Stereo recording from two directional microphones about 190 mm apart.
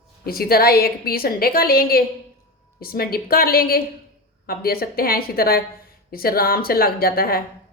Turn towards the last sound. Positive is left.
turn(degrees=50)  # may be behind; listen again after turning